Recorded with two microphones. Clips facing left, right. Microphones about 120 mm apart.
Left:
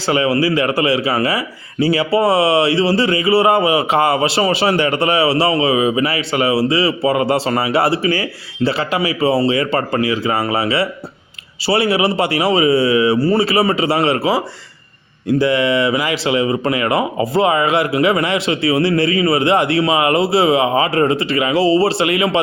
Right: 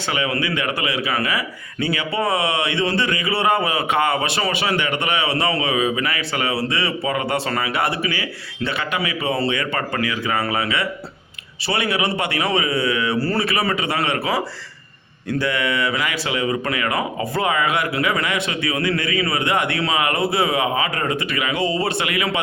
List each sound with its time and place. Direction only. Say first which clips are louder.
0.0 s speech: left 8 dB; 30° left (ahead or behind)